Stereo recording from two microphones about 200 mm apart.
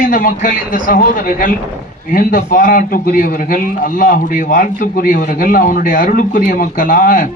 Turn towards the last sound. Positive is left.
turn(degrees=45)  # may be behind; listen again after turning